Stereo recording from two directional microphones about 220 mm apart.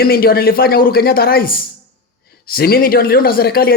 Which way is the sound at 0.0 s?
45° left (ahead or behind).